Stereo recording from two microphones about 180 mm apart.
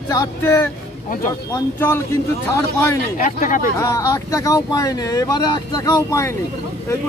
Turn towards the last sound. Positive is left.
turn(degrees=15)  # may be behind; listen again after turning